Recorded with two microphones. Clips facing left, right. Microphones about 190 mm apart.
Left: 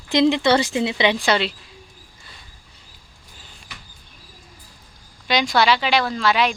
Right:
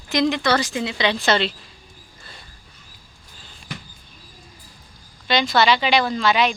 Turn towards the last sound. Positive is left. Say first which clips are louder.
# right 1 dB
turn(degrees=5)  # may be behind; listen again after turning